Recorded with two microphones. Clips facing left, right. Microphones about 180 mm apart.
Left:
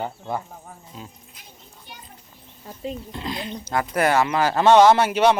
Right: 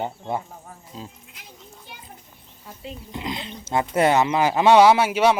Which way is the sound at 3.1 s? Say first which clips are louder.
Left 1 dB; 15° right (ahead or behind).